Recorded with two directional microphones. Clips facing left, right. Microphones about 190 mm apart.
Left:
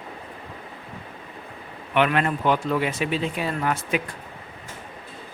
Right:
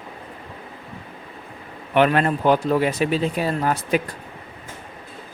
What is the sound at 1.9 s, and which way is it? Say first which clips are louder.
Speech: right 4 dB; 40° right (ahead or behind).